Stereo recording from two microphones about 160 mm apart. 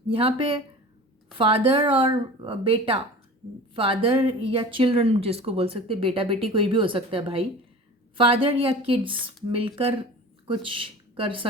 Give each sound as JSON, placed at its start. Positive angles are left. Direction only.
{"t": 0.1, "sound": "speech", "side_deg": -35}